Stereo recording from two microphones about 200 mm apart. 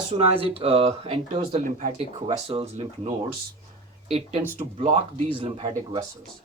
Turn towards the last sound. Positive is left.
turn(degrees=-20)  # may be behind; listen again after turning